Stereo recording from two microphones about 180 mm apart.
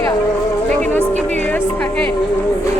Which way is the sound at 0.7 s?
10° left (ahead or behind).